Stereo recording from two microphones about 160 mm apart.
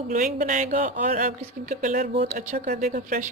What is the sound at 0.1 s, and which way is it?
A woman's voice, 50° right (ahead or behind).